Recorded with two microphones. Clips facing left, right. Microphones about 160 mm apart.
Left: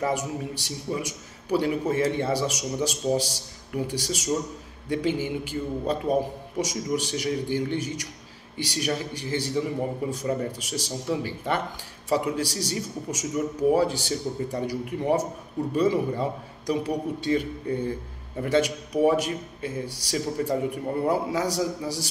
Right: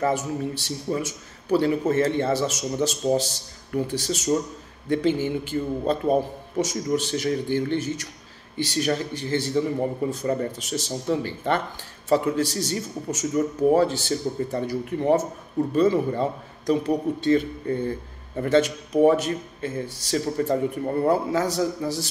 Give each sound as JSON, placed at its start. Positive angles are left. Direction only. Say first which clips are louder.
{"t": 0.0, "sound": "a man's voice", "louder": "right 3 dB", "side_deg": 15}